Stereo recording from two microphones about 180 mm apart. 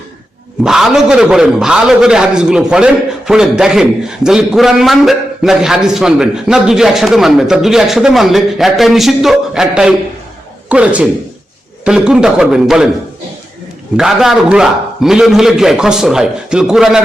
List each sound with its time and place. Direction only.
0.6 s a man's voice: 5° right (ahead or behind)
13.9 s a man's voice: 5° right (ahead or behind)